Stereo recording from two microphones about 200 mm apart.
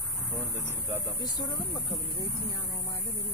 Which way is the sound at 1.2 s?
20° left (ahead or behind).